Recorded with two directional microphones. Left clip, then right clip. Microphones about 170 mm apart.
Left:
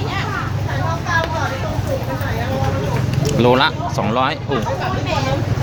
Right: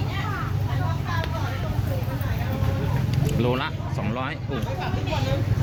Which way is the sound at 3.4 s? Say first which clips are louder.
Left 13 dB; 20° left (ahead or behind).